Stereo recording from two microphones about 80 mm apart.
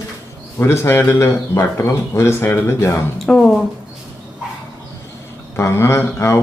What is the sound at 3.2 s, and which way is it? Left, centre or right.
Speech, centre.